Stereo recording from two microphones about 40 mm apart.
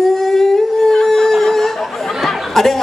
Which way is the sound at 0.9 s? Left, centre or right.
Centre.